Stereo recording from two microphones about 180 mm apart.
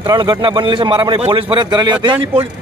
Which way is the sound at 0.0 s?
25° right (ahead or behind).